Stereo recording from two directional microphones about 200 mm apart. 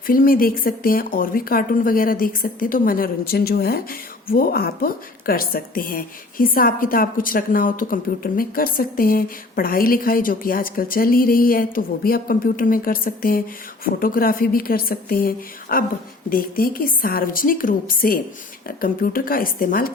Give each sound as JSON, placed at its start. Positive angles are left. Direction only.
{"t": 0.1, "sound": "a woman's voice", "side_deg": 45}